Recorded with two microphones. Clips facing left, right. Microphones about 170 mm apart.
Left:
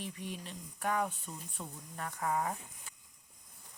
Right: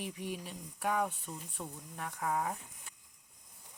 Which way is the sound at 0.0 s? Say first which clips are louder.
Right 2 dB; 10° right (ahead or behind).